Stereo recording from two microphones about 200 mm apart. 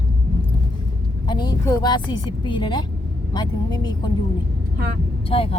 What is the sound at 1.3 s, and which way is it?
Speech, 20° left (ahead or behind).